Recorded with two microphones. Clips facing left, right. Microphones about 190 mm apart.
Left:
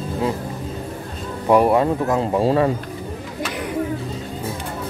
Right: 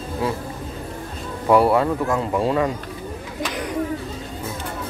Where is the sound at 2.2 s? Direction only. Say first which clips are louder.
Left 3 dB; 30° left (ahead or behind).